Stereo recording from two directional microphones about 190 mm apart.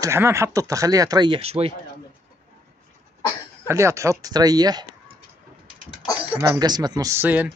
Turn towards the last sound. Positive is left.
turn(degrees=-10)  # may be behind; listen again after turning